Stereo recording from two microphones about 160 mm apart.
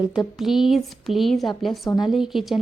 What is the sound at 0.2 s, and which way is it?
A woman's voice, centre (ahead or behind).